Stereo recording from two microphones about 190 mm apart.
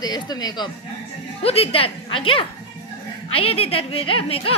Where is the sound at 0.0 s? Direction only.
20° left (ahead or behind).